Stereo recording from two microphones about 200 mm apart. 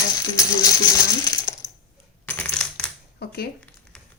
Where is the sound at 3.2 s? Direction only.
50° left (ahead or behind).